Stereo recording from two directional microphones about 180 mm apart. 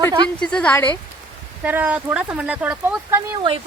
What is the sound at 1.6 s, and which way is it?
Speech, 10° right (ahead or behind).